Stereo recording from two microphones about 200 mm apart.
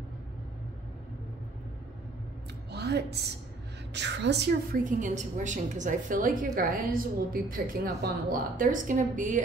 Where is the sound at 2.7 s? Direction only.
55° right (ahead or behind).